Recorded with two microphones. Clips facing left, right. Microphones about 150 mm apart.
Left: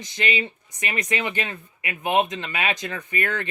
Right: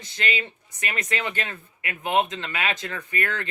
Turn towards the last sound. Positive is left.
turn(degrees=20)  # may be behind; listen again after turning